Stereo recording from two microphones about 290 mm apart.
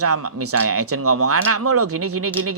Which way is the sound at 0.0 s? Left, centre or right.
Right.